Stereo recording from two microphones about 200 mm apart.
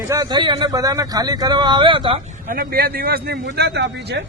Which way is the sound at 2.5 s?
45° right (ahead or behind).